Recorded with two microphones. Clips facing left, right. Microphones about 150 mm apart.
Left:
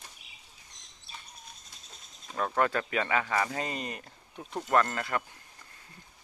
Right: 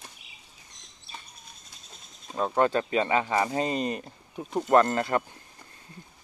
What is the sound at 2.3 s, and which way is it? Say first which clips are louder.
Speech: right 4 dB; 20° right (ahead or behind).